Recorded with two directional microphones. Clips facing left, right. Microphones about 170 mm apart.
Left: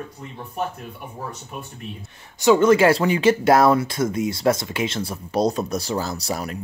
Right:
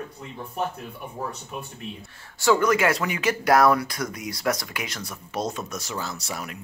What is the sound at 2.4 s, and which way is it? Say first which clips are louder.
Speech: left 6 dB; 20° left (ahead or behind).